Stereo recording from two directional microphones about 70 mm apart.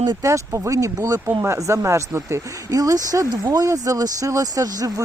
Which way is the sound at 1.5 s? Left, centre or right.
Right.